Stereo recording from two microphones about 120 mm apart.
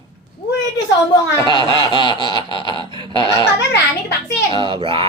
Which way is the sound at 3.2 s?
30° left (ahead or behind).